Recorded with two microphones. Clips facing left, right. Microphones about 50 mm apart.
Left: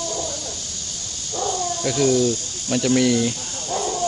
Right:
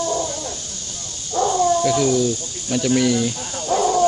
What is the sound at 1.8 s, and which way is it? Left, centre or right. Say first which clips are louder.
Speech: right 1 dB; centre.